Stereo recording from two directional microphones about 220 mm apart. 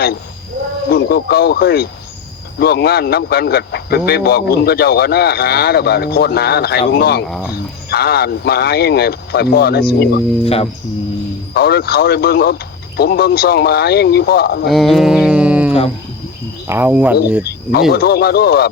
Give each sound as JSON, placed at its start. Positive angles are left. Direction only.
{"t": 0.9, "sound": "speech", "side_deg": 45}
{"t": 7.3, "sound": "speech", "side_deg": 0}
{"t": 7.5, "sound": "speech", "side_deg": 45}
{"t": 10.4, "sound": "speech", "side_deg": 25}
{"t": 11.5, "sound": "speech", "side_deg": 45}
{"t": 14.7, "sound": "a sound", "side_deg": 0}
{"t": 16.6, "sound": "speech", "side_deg": -10}
{"t": 17.4, "sound": "speech", "side_deg": 45}